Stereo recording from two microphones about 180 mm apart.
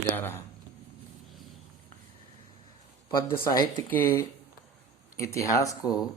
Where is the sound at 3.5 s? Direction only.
20° left (ahead or behind).